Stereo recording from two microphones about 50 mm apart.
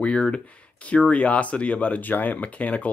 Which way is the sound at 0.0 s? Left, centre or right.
Left.